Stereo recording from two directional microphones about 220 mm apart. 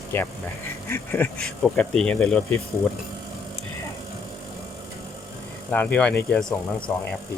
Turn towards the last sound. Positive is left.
turn(degrees=5)  # may be behind; listen again after turning